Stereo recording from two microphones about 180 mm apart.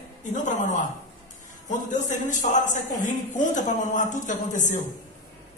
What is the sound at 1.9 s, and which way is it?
A man's voice, 45° left (ahead or behind).